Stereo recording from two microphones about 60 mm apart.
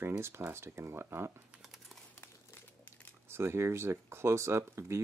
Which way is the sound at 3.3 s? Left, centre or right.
Right.